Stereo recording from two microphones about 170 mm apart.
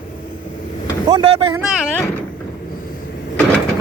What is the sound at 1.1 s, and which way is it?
Speech, 25° right (ahead or behind).